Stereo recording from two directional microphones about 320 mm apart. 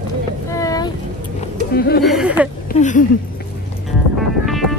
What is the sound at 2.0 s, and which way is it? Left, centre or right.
Speech, centre.